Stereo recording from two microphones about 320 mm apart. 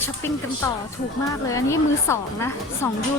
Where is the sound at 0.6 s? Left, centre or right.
Centre.